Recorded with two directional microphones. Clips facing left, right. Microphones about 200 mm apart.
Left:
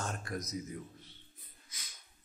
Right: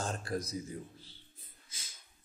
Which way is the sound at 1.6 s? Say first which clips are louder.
Even; 25° right (ahead or behind).